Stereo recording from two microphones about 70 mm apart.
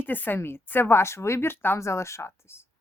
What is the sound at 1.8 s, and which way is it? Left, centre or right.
Speech, left.